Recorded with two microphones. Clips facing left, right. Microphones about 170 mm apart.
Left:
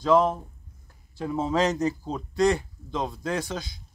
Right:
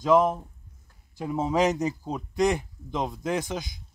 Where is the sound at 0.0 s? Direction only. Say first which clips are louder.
Even; 15° right (ahead or behind).